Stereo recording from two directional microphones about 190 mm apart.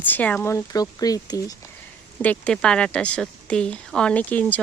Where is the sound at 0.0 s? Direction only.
10° left (ahead or behind).